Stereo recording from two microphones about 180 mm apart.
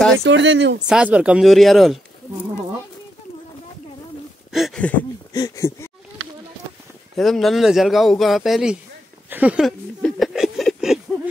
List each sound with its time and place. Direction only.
0.2 s speech: 85° right
0.8 s speech: 5° right (ahead or behind)
4.5 s speech: centre (ahead or behind)
5.3 s speech: 20° left (ahead or behind)
7.2 s speech: centre (ahead or behind)
9.3 s a sound: 5° right (ahead or behind)